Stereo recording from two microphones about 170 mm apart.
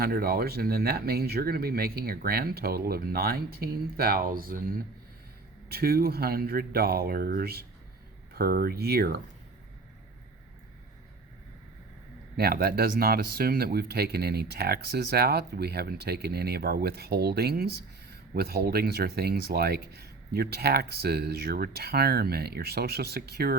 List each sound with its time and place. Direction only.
0.0 s speech: 65° right (ahead or behind)
12.4 s speech: 65° right (ahead or behind)